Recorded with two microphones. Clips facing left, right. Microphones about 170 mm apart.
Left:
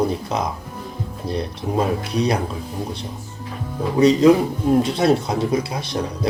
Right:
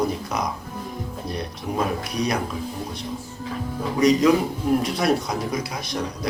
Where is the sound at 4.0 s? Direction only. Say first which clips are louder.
Left 4 dB; 30° left (ahead or behind).